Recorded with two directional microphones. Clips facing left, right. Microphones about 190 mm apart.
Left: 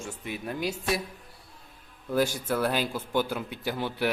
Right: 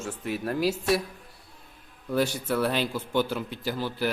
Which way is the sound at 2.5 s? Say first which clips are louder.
Right 1 dB; 5° left (ahead or behind).